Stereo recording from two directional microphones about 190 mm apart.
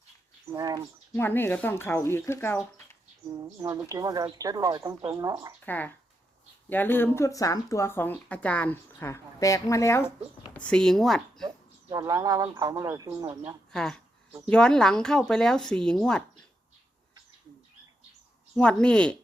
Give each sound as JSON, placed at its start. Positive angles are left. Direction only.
{"t": 0.5, "sound": "speech", "side_deg": -20}
{"t": 1.1, "sound": "speech", "side_deg": 10}
{"t": 3.3, "sound": "speech", "side_deg": -20}
{"t": 5.6, "sound": "speech", "side_deg": 10}
{"t": 11.4, "sound": "speech", "side_deg": -20}
{"t": 13.7, "sound": "speech", "side_deg": 5}
{"t": 18.5, "sound": "speech", "side_deg": 5}